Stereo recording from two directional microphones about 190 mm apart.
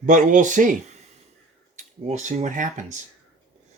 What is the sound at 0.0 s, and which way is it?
Speech, 45° right (ahead or behind).